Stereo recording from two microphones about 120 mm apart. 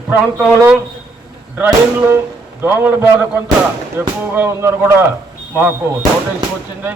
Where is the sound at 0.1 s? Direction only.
5° right (ahead or behind).